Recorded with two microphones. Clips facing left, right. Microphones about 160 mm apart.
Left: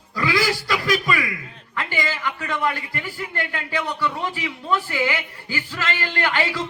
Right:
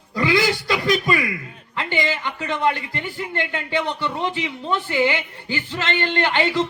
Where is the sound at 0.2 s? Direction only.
25° right (ahead or behind).